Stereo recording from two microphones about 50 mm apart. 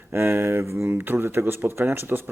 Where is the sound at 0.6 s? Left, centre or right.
Right.